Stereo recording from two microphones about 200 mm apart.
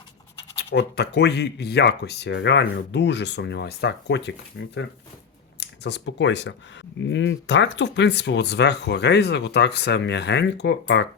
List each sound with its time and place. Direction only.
0.5 s speech: 55° left (ahead or behind)